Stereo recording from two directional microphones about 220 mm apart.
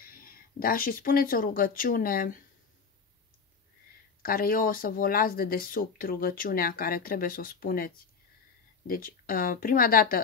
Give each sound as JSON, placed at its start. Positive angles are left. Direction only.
{"t": 0.0, "sound": "speech", "side_deg": 40}
{"t": 4.2, "sound": "speech", "side_deg": 40}